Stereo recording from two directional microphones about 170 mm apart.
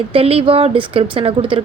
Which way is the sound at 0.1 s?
35° right (ahead or behind).